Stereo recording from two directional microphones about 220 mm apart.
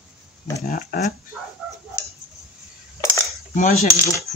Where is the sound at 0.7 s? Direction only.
45° left (ahead or behind).